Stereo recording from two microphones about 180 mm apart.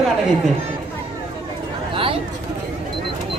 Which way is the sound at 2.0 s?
30° right (ahead or behind).